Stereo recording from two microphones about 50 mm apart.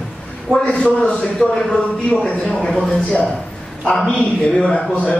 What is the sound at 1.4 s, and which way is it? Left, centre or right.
Speech, centre.